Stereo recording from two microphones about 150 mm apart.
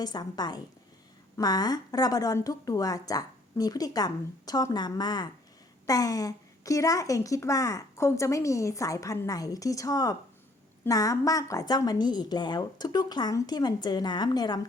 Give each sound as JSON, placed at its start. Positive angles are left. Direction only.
{"t": 0.0, "sound": "a woman's voice", "side_deg": 25}